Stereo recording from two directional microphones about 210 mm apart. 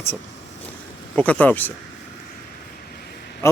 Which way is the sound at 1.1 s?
5° left (ahead or behind).